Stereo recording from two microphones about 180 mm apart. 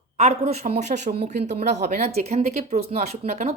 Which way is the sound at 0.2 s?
35° right (ahead or behind).